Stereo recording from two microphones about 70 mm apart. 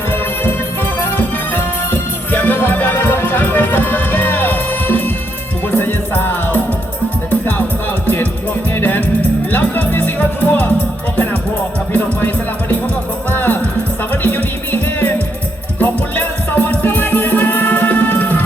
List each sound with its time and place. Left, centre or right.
0.9 s music: left
8.0 s music: left
11.9 s music: left